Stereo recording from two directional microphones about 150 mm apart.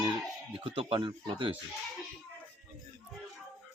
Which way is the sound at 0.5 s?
40° right (ahead or behind).